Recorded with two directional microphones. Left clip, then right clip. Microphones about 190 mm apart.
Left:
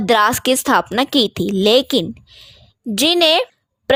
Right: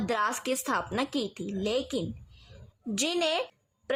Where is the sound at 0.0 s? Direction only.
45° left (ahead or behind).